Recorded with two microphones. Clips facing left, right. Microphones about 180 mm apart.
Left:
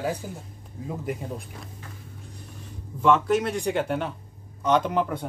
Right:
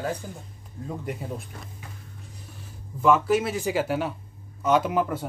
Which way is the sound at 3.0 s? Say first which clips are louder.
Even; 5° right (ahead or behind).